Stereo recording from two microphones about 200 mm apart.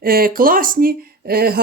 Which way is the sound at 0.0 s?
45° right (ahead or behind).